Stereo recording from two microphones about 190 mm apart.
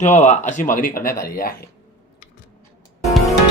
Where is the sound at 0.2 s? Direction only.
40° left (ahead or behind).